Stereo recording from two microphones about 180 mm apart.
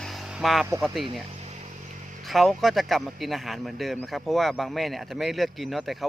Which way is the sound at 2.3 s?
Centre (ahead or behind).